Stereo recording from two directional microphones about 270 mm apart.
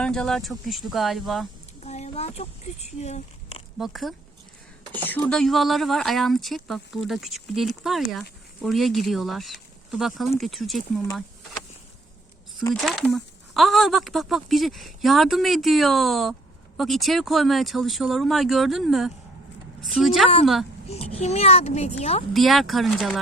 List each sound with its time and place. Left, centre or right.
0.0 s speech: centre
1.8 s speech: left
3.8 s speech: centre
12.7 s speech: centre
20.8 s speech: left
22.3 s speech: centre